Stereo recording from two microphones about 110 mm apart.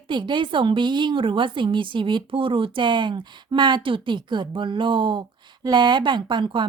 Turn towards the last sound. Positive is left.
turn(degrees=-45)  # may be behind; listen again after turning